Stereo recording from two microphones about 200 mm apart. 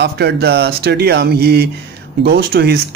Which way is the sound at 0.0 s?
55° right (ahead or behind).